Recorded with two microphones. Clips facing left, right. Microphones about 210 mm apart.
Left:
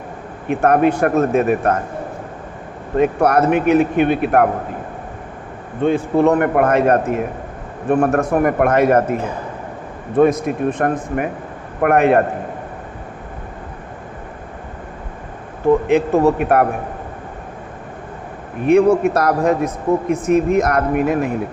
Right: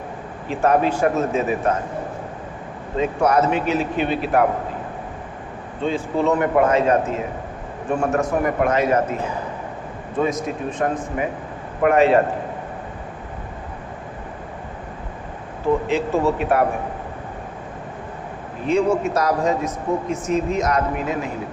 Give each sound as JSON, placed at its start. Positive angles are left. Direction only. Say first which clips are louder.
{"t": 0.4, "sound": "speech", "louder": "left 4 dB", "side_deg": 60}
{"t": 2.9, "sound": "speech", "louder": "left 4 dB", "side_deg": 60}
{"t": 5.8, "sound": "speech", "louder": "left 6 dB", "side_deg": 60}
{"t": 10.2, "sound": "speech", "louder": "left 8 dB", "side_deg": 60}
{"t": 15.9, "sound": "speech", "louder": "left 6 dB", "side_deg": 60}
{"t": 18.6, "sound": "speech", "louder": "left 7 dB", "side_deg": 60}